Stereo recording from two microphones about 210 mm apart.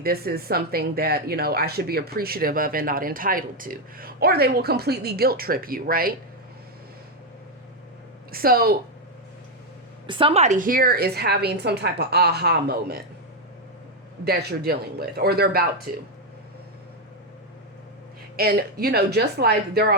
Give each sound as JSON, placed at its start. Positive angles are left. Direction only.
{"t": 0.0, "sound": "speech", "side_deg": -45}
{"t": 8.3, "sound": "speech", "side_deg": -45}
{"t": 10.1, "sound": "speech", "side_deg": -25}
{"t": 14.3, "sound": "speech", "side_deg": -50}
{"t": 18.3, "sound": "speech", "side_deg": -45}